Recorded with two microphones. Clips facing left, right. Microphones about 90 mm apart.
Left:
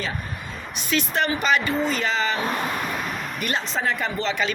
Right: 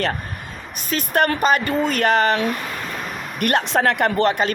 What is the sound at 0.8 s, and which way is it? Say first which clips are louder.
Speech: right 4 dB; 45° right (ahead or behind).